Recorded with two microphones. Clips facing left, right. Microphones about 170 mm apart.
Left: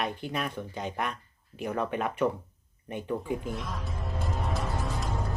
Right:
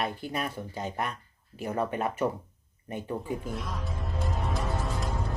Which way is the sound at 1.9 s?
45° right (ahead or behind).